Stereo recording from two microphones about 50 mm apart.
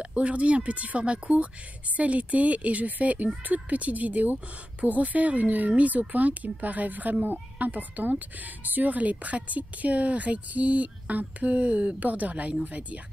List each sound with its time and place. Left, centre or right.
0.0 s speech: right